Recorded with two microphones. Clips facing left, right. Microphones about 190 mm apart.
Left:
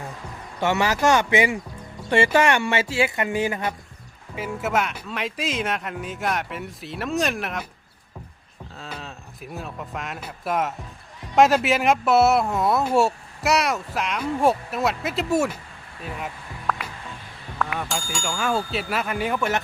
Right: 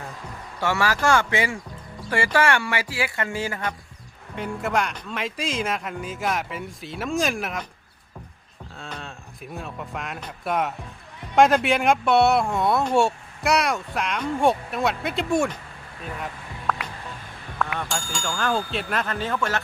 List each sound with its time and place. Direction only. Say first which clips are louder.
0.6 s speech: left 2 dB; 20° left (ahead or behind)
4.4 s speech: left 1 dB; 5° left (ahead or behind)
8.7 s speech: even; centre (ahead or behind)
16.2 s music: even; centre (ahead or behind)
17.6 s speech: even; centre (ahead or behind); by 19.6 s 15° left (ahead or behind)